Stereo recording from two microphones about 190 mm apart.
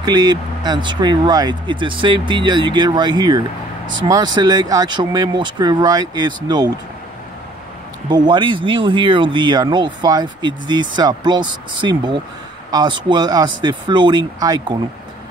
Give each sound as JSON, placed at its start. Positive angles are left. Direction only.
{"t": 0.0, "sound": "speech", "side_deg": -20}
{"t": 8.1, "sound": "speech", "side_deg": -25}